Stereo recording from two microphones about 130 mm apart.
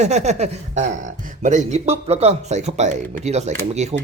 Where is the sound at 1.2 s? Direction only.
70° right (ahead or behind).